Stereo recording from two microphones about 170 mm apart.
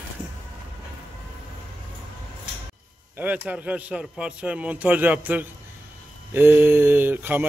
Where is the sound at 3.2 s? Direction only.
10° right (ahead or behind).